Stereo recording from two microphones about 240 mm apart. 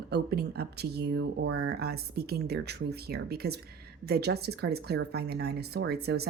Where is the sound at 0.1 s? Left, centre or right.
Right.